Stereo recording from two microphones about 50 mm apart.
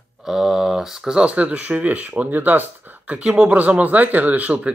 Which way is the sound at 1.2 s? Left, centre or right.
Right.